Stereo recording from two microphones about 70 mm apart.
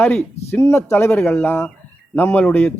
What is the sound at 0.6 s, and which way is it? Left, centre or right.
A man's voice, left.